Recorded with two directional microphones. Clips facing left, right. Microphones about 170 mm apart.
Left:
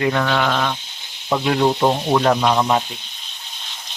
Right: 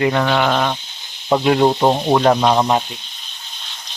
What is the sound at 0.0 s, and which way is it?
Speech, 20° right (ahead or behind).